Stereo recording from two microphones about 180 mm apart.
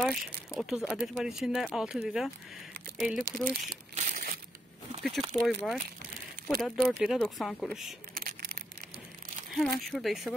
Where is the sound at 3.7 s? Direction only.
50° right (ahead or behind).